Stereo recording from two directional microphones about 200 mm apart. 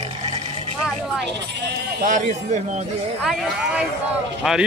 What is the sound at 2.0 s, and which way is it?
Speech, 40° right (ahead or behind).